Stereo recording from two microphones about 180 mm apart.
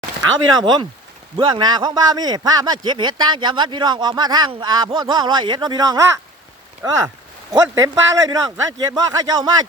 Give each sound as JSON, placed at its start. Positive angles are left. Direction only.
{"t": 0.6, "sound": "a man's voice", "side_deg": -25}
{"t": 7.5, "sound": "a man's voice", "side_deg": -20}